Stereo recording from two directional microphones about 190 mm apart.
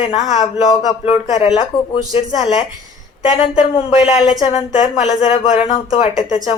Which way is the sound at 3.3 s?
35° left (ahead or behind).